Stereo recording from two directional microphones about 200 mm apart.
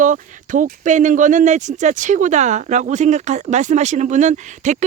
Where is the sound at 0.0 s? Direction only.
40° right (ahead or behind).